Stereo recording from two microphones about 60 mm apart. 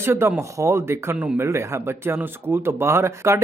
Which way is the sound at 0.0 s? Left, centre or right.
Right.